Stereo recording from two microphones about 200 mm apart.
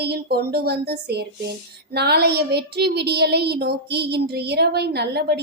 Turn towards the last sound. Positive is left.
turn(degrees=-55)  # may be behind; listen again after turning